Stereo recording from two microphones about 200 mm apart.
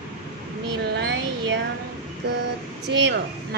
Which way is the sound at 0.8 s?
55° right (ahead or behind).